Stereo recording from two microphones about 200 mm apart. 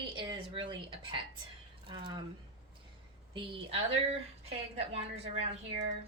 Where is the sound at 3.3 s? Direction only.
25° right (ahead or behind).